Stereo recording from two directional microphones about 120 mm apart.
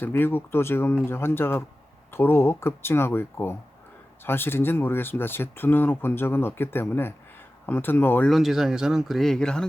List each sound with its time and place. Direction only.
0.0 s speech: 20° left (ahead or behind)
8.3 s speech: centre (ahead or behind)